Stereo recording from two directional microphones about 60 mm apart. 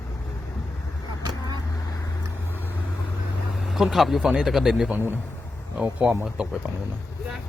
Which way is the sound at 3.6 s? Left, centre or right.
Centre.